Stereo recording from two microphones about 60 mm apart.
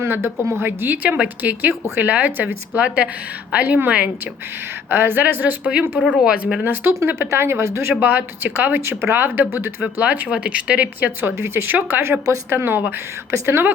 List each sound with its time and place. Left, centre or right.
0.0 s a woman's voice: right
1.0 s a woman's voice: right
4.9 s speech: right; by 6.6 s centre
6.7 s speech: right
8.0 s a woman's voice: right
11.3 s speech: right